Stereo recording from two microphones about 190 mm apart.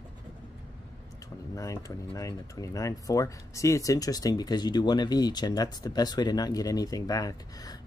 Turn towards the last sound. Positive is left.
turn(degrees=20)  # may be behind; listen again after turning